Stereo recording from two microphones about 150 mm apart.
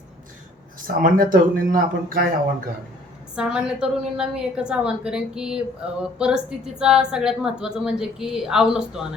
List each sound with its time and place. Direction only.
1.0 s speech: 70° right (ahead or behind)
3.3 s a woman's voice: 5° right (ahead or behind)